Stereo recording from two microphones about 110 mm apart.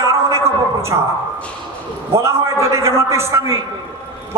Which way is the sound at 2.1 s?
25° right (ahead or behind).